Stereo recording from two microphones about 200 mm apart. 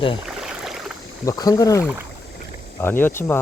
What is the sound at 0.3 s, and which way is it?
Rowboat, centre (ahead or behind).